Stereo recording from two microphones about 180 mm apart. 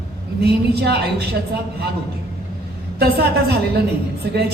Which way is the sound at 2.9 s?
65° right (ahead or behind).